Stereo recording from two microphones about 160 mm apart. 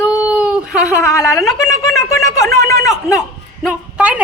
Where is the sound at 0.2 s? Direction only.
5° right (ahead or behind).